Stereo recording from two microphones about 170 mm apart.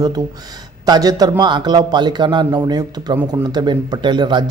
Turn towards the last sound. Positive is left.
turn(degrees=-25)  # may be behind; listen again after turning